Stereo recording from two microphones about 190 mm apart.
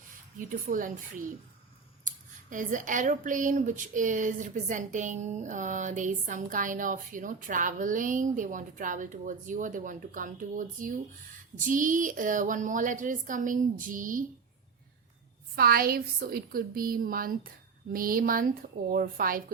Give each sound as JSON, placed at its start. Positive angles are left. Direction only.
{"t": 0.3, "sound": "speech", "side_deg": -45}
{"t": 15.5, "sound": "speech", "side_deg": -50}